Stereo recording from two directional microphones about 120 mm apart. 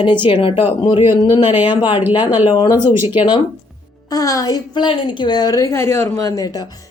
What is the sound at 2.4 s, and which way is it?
Speech, 40° left (ahead or behind).